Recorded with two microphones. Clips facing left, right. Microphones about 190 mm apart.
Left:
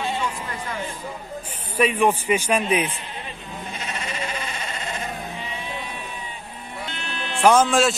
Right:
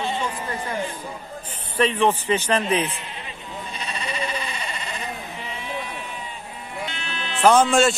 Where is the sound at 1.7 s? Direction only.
10° left (ahead or behind).